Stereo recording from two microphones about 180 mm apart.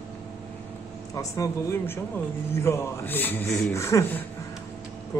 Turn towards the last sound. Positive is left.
turn(degrees=15)  # may be behind; listen again after turning